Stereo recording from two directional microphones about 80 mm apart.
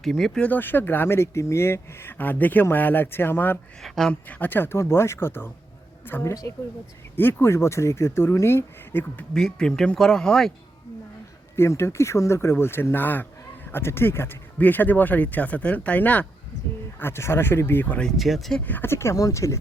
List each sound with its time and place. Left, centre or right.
0.0 s speech: centre
0.4 s speech: left
3.8 s speech: centre
4.1 s speech: left
9.3 s speech: centre
11.5 s speech: left
17.0 s speech: left
18.2 s speech: centre
18.6 s speech: left